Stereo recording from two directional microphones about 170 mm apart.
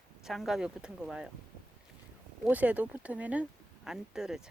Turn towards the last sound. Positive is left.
turn(degrees=-5)  # may be behind; listen again after turning